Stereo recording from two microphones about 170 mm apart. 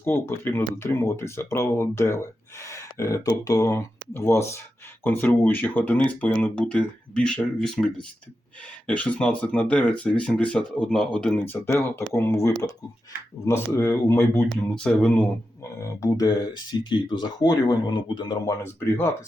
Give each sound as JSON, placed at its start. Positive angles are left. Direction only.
{"t": 0.0, "sound": "speech", "side_deg": 10}
{"t": 15.8, "sound": "speech", "side_deg": 20}